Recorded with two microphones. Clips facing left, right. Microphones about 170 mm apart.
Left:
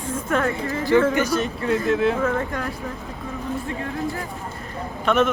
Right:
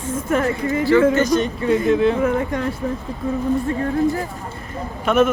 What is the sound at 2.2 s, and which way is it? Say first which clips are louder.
Speech: right 4 dB; 15° right (ahead or behind).